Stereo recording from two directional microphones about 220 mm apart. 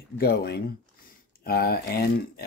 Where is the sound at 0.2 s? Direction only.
45° left (ahead or behind).